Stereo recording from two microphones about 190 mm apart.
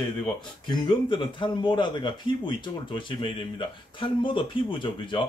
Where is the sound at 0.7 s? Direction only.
25° left (ahead or behind).